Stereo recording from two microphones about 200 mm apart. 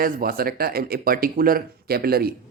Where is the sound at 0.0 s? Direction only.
45° right (ahead or behind).